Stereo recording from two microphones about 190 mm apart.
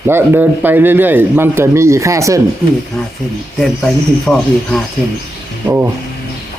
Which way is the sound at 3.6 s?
5° left (ahead or behind).